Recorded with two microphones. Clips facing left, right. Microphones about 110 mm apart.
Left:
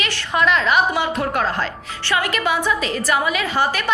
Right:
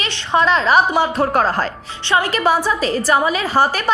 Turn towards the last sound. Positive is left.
turn(degrees=-35)  # may be behind; listen again after turning